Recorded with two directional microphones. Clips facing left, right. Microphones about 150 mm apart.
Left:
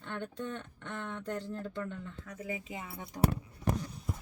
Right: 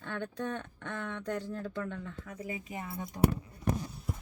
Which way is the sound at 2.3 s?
25° right (ahead or behind).